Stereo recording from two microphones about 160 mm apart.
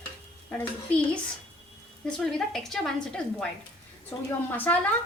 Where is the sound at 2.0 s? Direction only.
5° left (ahead or behind).